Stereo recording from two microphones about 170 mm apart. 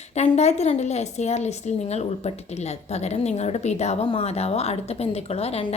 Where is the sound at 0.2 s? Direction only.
40° left (ahead or behind).